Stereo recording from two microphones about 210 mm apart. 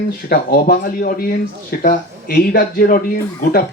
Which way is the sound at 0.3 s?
45° left (ahead or behind).